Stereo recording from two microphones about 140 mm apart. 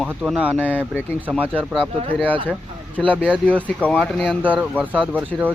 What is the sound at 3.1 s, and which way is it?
Speech, 10° right (ahead or behind).